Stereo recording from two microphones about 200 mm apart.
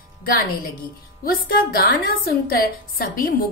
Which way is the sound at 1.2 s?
45° left (ahead or behind).